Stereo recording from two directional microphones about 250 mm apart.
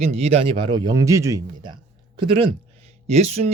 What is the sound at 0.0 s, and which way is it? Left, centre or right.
Speech, right.